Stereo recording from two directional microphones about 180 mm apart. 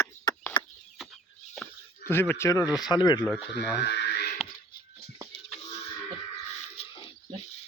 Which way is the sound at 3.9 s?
70° left (ahead or behind).